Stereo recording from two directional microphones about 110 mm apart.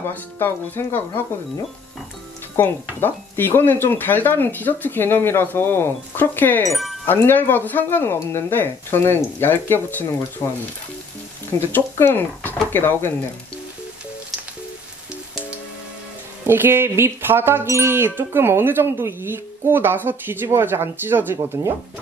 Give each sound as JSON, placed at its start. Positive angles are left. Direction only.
{"t": 0.0, "sound": "speech", "side_deg": 20}
{"t": 3.0, "sound": "speech", "side_deg": 20}
{"t": 6.7, "sound": "speech", "side_deg": 0}
{"t": 7.1, "sound": "speech", "side_deg": 20}
{"t": 10.4, "sound": "speech", "side_deg": 30}
{"t": 11.5, "sound": "speech", "side_deg": 20}
{"t": 16.4, "sound": "music", "side_deg": -20}